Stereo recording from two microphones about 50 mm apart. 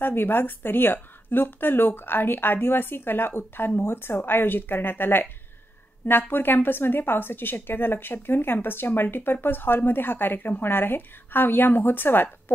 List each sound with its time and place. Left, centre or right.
0.0 s speech: left